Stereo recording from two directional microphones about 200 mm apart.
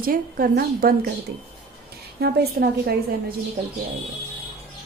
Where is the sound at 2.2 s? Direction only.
50° right (ahead or behind).